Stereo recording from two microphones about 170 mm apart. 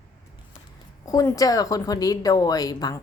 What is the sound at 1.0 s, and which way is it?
Speech, 20° left (ahead or behind).